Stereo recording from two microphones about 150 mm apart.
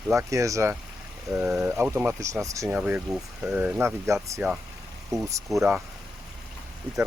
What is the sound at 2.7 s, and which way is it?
Speech, 10° right (ahead or behind).